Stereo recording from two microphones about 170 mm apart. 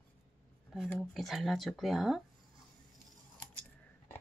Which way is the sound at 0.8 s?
Centre (ahead or behind).